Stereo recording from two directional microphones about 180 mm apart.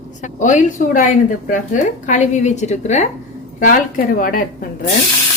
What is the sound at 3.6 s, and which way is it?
Speech, 50° left (ahead or behind).